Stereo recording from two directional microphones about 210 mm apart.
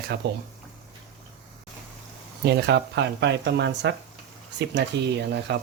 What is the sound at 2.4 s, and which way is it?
Speech, 55° right (ahead or behind).